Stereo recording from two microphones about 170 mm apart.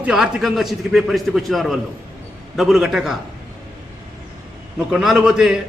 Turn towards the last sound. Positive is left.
turn(degrees=-5)  # may be behind; listen again after turning